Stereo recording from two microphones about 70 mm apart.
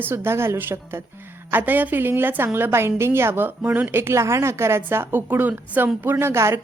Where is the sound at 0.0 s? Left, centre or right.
Right.